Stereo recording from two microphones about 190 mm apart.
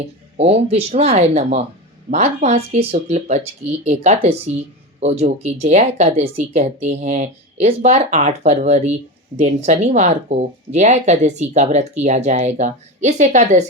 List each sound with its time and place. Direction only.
0.3 s speech: 35° right (ahead or behind)